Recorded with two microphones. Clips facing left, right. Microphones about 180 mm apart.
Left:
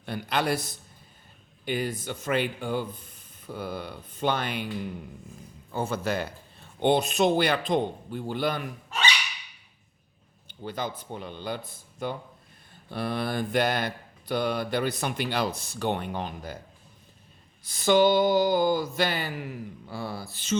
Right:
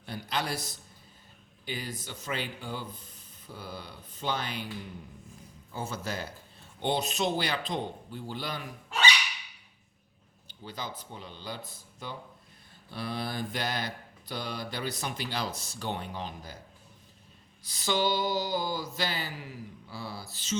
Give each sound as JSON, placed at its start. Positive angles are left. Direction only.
{"t": 0.0, "sound": "mantra", "side_deg": 60}
{"t": 5.7, "sound": "mantra", "side_deg": 60}
{"t": 10.5, "sound": "mantra", "side_deg": 55}
{"t": 17.6, "sound": "a sound", "side_deg": 50}